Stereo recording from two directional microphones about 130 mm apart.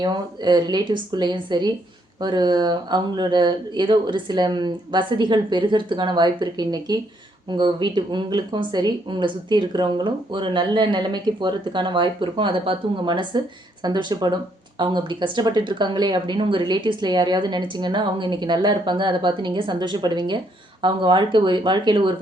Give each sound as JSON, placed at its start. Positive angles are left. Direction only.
{"t": 0.0, "sound": "a woman's voice", "side_deg": -35}